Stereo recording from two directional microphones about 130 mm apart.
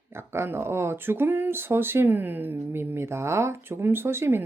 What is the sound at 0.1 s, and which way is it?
Speech, 20° right (ahead or behind).